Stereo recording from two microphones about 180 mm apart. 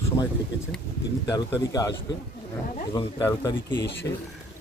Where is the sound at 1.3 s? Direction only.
20° left (ahead or behind).